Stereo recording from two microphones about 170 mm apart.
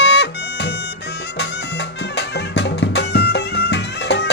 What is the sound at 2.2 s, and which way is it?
Music, 90° left.